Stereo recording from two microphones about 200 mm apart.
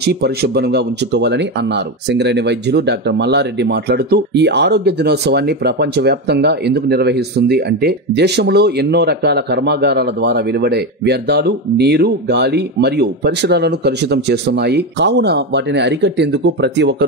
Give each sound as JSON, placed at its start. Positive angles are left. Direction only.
{"t": 0.0, "sound": "speech", "side_deg": -55}